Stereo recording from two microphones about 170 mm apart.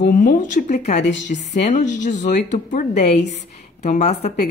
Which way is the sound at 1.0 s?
90° left.